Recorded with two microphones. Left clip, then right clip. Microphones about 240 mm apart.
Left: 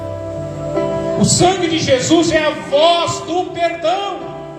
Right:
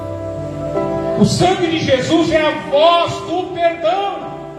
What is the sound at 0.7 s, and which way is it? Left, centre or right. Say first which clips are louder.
Speech: left 1 dB; left.